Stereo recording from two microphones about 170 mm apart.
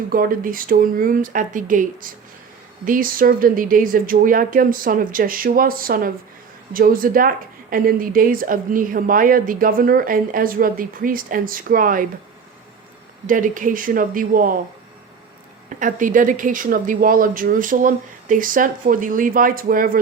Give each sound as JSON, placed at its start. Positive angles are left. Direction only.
{"t": 0.1, "sound": "a woman's voice", "side_deg": -55}
{"t": 13.2, "sound": "speech", "side_deg": -50}
{"t": 15.8, "sound": "speech", "side_deg": -50}